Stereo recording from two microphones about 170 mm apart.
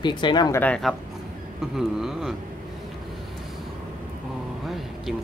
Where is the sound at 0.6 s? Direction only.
5° left (ahead or behind).